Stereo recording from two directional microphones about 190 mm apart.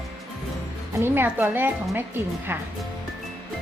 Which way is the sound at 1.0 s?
10° right (ahead or behind).